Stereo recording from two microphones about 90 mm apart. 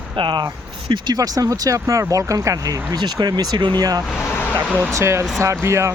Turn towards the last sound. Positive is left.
turn(degrees=-30)  # may be behind; listen again after turning